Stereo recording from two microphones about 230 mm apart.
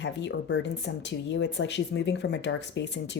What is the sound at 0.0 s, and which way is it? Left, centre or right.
Speech, left.